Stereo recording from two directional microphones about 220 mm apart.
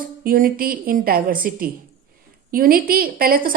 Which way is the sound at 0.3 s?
40° right (ahead or behind).